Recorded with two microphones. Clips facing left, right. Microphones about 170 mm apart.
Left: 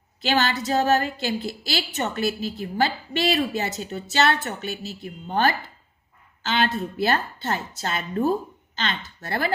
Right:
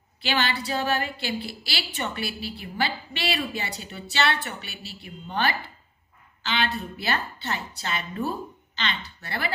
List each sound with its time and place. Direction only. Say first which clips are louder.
0.2 s a woman's voice: left 4 dB; 45° left (ahead or behind)